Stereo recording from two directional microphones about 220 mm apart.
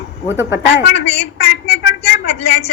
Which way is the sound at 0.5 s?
50° left (ahead or behind).